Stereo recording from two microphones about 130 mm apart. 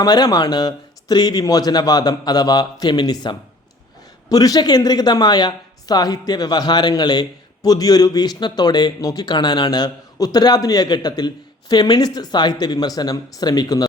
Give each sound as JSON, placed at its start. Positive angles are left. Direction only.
{"t": 0.0, "sound": "speech", "side_deg": 30}